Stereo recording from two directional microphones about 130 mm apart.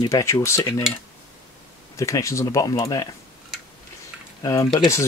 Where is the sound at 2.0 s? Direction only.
25° left (ahead or behind).